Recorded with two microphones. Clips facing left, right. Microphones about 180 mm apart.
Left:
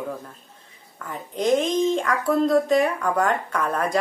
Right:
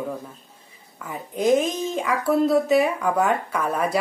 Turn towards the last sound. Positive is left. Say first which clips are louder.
# even
turn(degrees=-5)  # may be behind; listen again after turning